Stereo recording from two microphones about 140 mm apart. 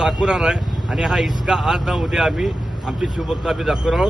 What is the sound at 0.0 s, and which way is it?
A man's voice, 5° right (ahead or behind).